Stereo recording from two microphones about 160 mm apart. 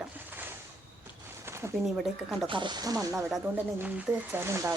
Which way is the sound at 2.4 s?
30° right (ahead or behind).